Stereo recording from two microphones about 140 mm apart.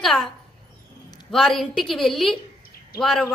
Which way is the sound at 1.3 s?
Centre (ahead or behind).